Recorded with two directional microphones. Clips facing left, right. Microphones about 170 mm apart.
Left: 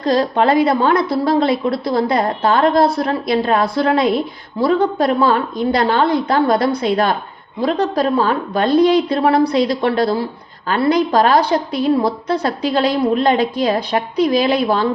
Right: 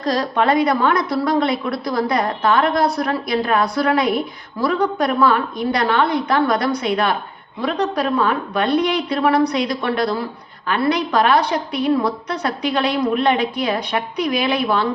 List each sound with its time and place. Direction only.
0.0 s a woman's voice: 30° left (ahead or behind)